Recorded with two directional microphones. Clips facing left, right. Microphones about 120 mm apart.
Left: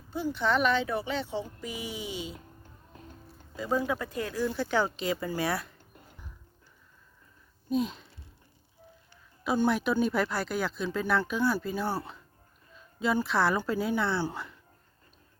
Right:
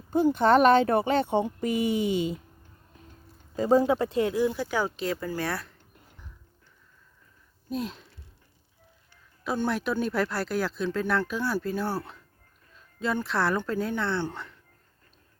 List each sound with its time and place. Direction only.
0.1 s speech: 50° right (ahead or behind)
3.5 s speech: 40° right (ahead or behind); by 5.0 s 10° right (ahead or behind)
5.0 s speech: centre (ahead or behind)
7.7 s speech: centre (ahead or behind)
9.4 s a woman's voice: centre (ahead or behind)